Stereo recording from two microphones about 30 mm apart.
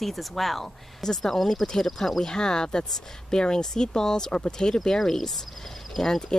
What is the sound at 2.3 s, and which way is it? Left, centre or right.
Speech, left.